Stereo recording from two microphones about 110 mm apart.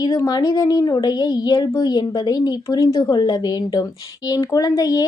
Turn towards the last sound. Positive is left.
turn(degrees=35)  # may be behind; listen again after turning